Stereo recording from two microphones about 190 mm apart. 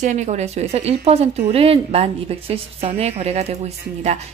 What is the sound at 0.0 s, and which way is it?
A woman's voice, 40° right (ahead or behind).